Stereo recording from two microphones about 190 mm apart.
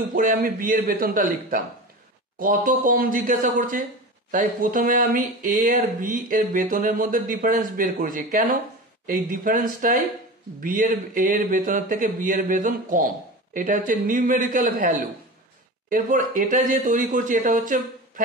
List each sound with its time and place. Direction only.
0.1 s speech: 45° right (ahead or behind)